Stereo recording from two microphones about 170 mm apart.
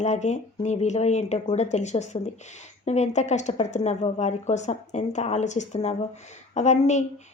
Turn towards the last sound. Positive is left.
turn(degrees=40)  # may be behind; listen again after turning